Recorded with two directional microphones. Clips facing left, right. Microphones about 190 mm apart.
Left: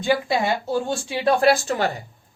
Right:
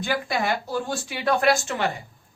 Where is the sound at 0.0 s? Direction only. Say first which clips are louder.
Left 5 dB; 25° left (ahead or behind).